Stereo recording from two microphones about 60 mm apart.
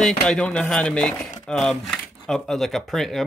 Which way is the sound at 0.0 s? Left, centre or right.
Centre.